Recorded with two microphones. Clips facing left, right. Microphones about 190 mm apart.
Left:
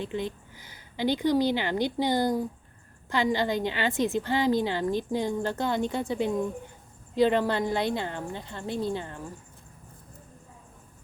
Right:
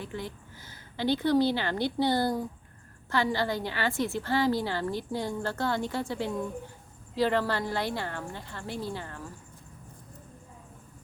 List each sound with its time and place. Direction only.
0.0 s a woman's voice: 20° left (ahead or behind)